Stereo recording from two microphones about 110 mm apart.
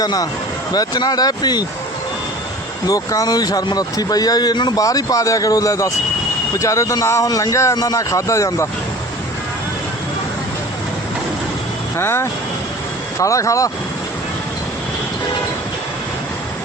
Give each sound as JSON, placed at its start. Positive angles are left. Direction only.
{"t": 0.0, "sound": "speech", "side_deg": 35}
{"t": 2.8, "sound": "a man's voice", "side_deg": 35}
{"t": 11.9, "sound": "a man's voice", "side_deg": 25}